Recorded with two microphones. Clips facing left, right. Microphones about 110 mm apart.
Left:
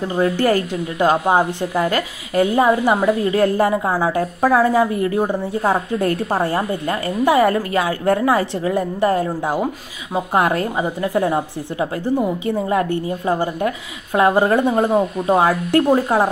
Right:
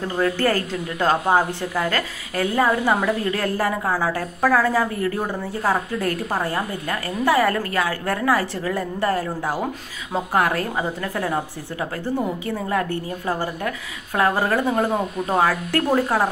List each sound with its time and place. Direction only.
0.1 s a woman's voice: 20° left (ahead or behind)